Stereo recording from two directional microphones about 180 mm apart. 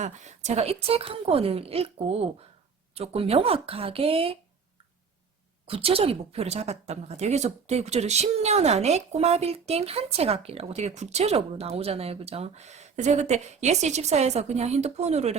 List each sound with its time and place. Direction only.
0.0 s speech: 40° right (ahead or behind)
5.6 s speech: 30° right (ahead or behind)